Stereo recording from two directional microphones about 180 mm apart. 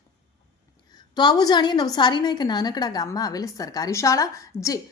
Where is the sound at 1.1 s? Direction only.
25° left (ahead or behind).